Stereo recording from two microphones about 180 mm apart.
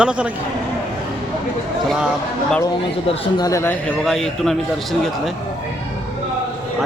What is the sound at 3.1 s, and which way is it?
Speech, 20° left (ahead or behind).